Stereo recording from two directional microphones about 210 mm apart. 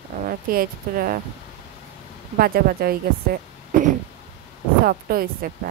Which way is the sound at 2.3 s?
45° right (ahead or behind).